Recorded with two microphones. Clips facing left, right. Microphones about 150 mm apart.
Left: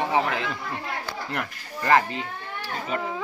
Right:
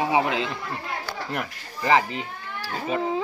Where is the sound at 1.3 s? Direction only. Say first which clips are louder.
Right 1 dB; 10° right (ahead or behind).